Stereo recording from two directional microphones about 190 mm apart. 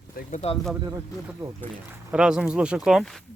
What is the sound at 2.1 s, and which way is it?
Speech, 5° right (ahead or behind).